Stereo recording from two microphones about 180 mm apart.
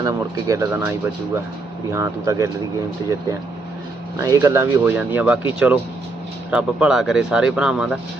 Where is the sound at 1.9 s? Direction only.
15° right (ahead or behind).